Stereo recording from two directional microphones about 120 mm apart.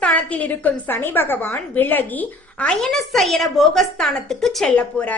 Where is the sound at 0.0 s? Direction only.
10° left (ahead or behind).